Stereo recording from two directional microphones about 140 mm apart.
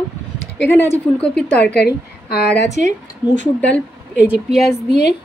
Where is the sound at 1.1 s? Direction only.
5° left (ahead or behind).